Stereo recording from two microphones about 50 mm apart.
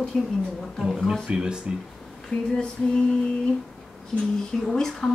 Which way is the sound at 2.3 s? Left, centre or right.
Left.